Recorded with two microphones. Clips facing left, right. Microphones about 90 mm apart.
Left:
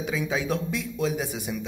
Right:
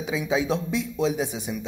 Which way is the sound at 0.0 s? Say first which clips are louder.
Right 3 dB; 20° right (ahead or behind).